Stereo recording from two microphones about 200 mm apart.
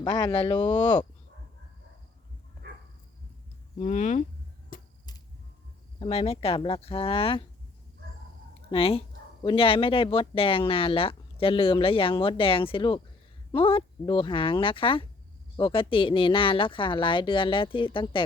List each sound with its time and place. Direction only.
0.0 s speech: 20° left (ahead or behind)
3.8 s speech: 35° left (ahead or behind)
4.7 s a sound: 45° left (ahead or behind)
6.0 s speech: 30° left (ahead or behind)
8.7 s speech: 30° left (ahead or behind)